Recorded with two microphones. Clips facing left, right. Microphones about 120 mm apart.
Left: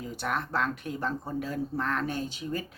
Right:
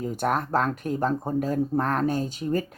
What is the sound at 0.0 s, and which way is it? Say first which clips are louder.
Speech: right 7 dB; 45° right (ahead or behind).